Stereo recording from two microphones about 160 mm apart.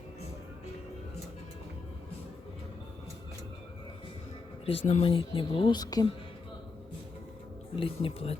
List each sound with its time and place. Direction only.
4.6 s speech: 40° left (ahead or behind)
7.8 s speech: 35° left (ahead or behind)